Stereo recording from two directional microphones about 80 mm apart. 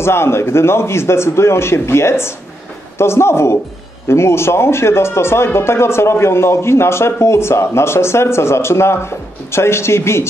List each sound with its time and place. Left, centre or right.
0.0 s speech: left